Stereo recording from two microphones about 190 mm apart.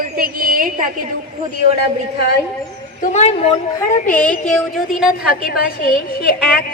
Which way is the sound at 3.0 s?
35° left (ahead or behind).